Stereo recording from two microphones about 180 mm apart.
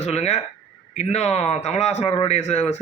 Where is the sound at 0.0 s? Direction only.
35° left (ahead or behind).